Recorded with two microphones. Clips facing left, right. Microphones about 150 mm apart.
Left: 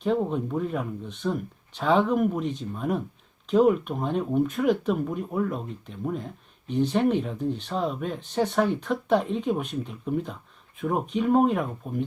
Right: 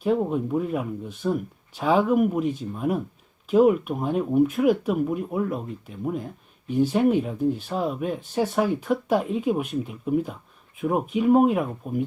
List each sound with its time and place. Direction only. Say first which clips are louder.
0.0 s speech: right 2 dB; 5° right (ahead or behind)